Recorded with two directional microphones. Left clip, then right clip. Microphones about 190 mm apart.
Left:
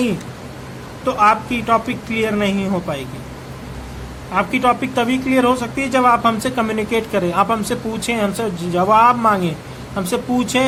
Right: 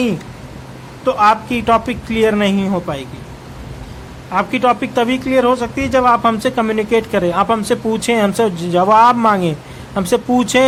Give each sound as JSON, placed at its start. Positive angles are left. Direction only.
{"t": 1.0, "sound": "speech", "side_deg": -20}
{"t": 4.3, "sound": "speech", "side_deg": -25}